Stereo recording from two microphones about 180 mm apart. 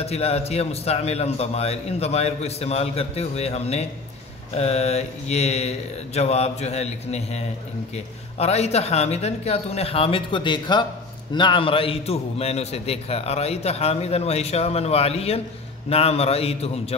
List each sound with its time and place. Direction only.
0.0 s a man's voice: 35° left (ahead or behind)